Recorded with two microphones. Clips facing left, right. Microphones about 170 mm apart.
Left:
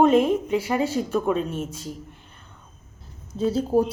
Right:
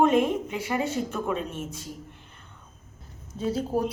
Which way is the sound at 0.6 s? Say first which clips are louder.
Left 4 dB; 35° left (ahead or behind).